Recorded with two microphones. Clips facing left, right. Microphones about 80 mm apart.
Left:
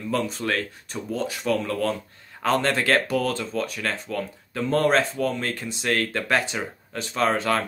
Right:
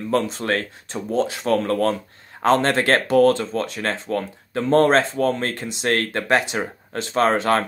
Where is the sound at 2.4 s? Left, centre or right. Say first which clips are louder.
Right 5 dB; right.